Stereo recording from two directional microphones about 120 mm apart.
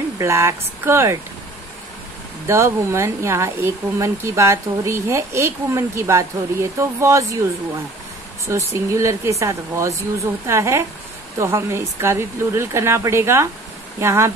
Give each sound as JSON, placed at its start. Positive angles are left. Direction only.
{"t": 0.2, "sound": "speech", "side_deg": -25}
{"t": 2.4, "sound": "speech", "side_deg": -25}
{"t": 8.5, "sound": "speech", "side_deg": -25}